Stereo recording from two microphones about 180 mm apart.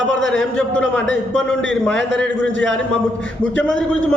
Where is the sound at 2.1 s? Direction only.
5° left (ahead or behind).